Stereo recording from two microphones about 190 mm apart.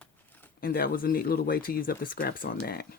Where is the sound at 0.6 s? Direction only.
50° left (ahead or behind).